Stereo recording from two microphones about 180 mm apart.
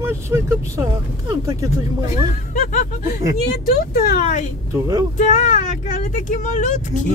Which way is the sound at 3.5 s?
55° left (ahead or behind).